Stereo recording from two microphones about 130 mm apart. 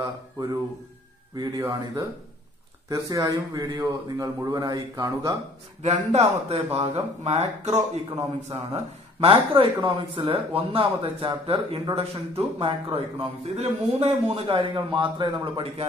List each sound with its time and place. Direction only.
2.9 s speech: 30° right (ahead or behind)
5.8 s speech: 55° right (ahead or behind)